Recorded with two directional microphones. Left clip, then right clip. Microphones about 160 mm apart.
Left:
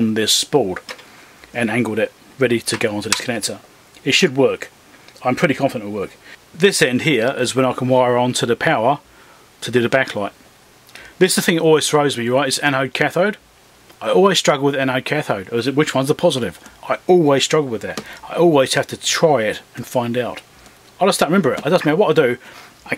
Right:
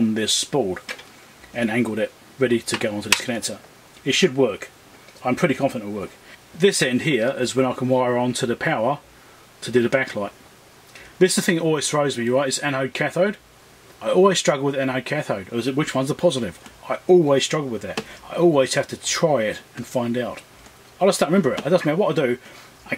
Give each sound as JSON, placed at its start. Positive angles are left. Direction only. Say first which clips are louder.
{"t": 0.1, "sound": "speech", "louder": "left 6 dB", "side_deg": 25}